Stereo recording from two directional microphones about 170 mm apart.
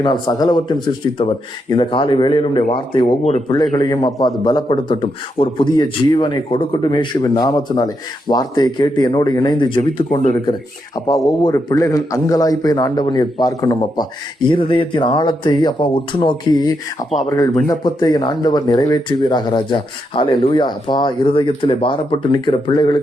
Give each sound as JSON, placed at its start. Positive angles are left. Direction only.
{"t": 0.0, "sound": "a man's voice", "side_deg": 25}
{"t": 3.6, "sound": "a man's voice", "side_deg": 25}